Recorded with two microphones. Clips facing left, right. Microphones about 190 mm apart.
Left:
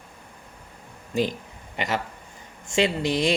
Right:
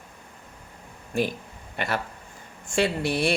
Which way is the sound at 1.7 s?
15° left (ahead or behind).